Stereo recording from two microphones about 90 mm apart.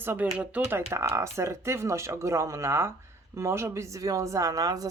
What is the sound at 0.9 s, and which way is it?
A woman's voice, 35° right (ahead or behind).